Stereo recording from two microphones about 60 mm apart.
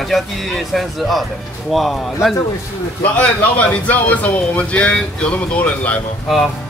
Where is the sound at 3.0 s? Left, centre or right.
Left.